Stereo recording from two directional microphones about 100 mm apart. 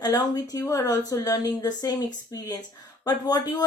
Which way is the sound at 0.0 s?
40° left (ahead or behind).